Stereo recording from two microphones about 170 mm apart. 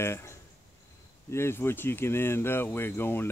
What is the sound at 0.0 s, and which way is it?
Speech, 15° left (ahead or behind).